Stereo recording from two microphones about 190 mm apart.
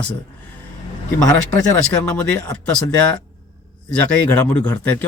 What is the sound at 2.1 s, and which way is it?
Speech, 5° left (ahead or behind).